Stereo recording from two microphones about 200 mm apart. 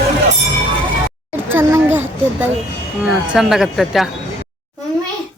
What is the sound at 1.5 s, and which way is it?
Speech, 10° right (ahead or behind).